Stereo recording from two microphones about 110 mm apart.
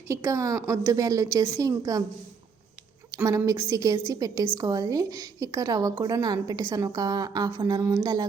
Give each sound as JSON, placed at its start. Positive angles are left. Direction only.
{"t": 0.1, "sound": "a woman's voice", "side_deg": -30}
{"t": 3.2, "sound": "a woman's voice", "side_deg": -30}